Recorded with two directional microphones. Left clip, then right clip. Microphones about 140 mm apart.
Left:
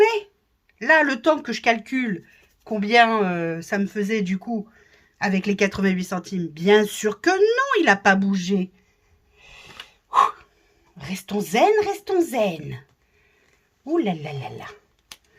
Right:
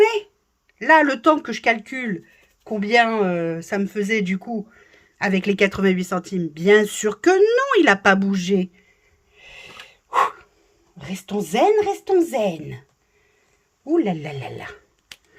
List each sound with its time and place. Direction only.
0.0 s a sound: 35° right (ahead or behind)
0.8 s speech: 35° right (ahead or behind); by 8.7 s 60° right (ahead or behind)
9.3 s a sound: 60° right (ahead or behind)
9.9 s breathing: 55° right (ahead or behind)
10.9 s speech: 35° right (ahead or behind)
13.8 s speech: 30° right (ahead or behind)
14.2 s speech: 50° right (ahead or behind)